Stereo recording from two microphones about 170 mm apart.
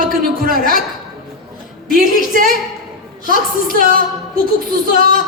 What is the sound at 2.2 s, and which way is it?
A woman's voice, 55° right (ahead or behind).